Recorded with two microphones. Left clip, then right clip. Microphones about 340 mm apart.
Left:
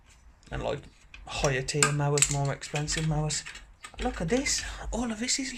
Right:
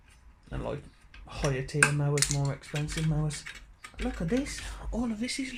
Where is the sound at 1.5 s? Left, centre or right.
Left.